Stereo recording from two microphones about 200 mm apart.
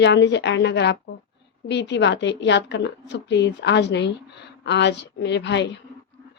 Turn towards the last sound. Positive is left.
turn(degrees=60)  # may be behind; listen again after turning